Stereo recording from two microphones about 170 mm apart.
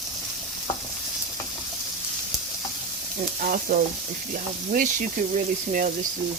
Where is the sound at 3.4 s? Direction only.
55° right (ahead or behind).